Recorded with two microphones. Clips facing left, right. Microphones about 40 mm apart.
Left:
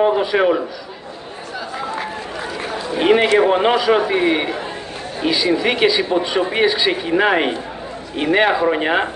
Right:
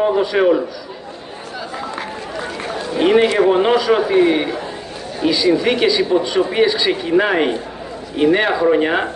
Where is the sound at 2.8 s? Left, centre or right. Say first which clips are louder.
Right 1 dB; centre.